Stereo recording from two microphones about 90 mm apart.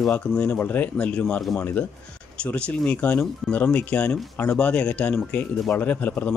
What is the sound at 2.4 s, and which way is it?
Speech, 10° left (ahead or behind).